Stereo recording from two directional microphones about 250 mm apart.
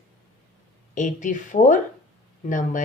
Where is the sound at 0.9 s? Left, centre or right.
Left.